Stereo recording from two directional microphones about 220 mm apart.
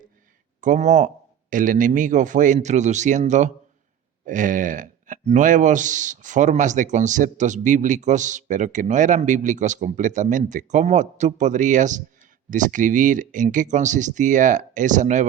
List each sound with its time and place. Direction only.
0.6 s a man's voice: 35° right (ahead or behind)